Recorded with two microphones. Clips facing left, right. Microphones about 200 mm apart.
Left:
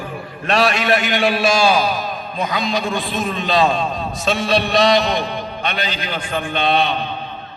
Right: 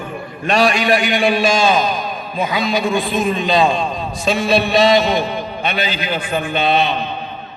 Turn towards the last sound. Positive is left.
turn(degrees=0)  # may be behind; listen again after turning